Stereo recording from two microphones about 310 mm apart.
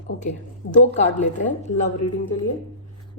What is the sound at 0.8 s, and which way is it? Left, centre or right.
Speech, left.